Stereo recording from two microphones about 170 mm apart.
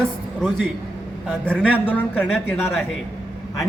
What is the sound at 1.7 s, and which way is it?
Speech, 10° left (ahead or behind).